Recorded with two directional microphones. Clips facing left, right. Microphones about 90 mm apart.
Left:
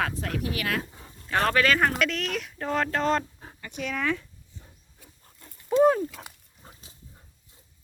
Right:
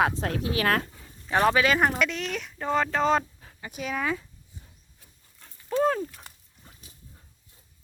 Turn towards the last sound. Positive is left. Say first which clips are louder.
# left 3 dB
turn(degrees=30)  # may be behind; listen again after turning